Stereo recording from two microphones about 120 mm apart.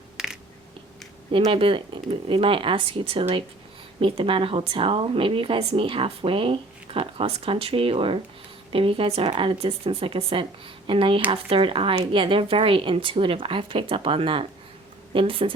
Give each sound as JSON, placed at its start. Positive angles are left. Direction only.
{"t": 1.5, "sound": "speech", "side_deg": -45}